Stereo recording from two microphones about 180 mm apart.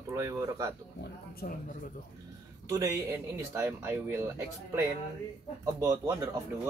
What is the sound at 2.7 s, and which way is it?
Speech, 15° right (ahead or behind).